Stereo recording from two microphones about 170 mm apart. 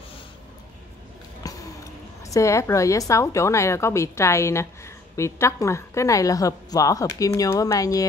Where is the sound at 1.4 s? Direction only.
20° left (ahead or behind).